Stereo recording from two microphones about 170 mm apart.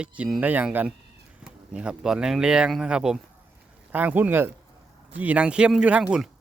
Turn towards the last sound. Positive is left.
turn(degrees=-5)  # may be behind; listen again after turning